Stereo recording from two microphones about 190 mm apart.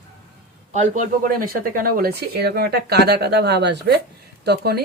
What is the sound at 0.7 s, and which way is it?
Speech, 40° right (ahead or behind).